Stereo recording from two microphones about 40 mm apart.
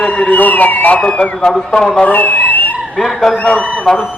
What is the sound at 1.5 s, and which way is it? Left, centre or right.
Speech, centre.